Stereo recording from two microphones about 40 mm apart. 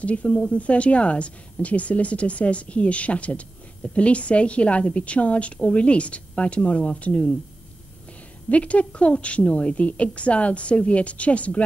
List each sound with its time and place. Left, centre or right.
0.0 s speech: left
8.5 s speech: left